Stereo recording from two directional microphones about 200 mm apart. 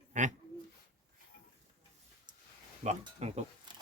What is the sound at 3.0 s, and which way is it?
Speech, 30° right (ahead or behind).